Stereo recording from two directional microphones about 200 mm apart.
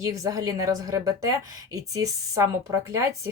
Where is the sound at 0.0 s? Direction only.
15° right (ahead or behind).